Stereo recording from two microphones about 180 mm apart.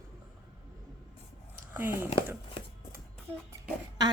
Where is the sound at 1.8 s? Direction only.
10° right (ahead or behind).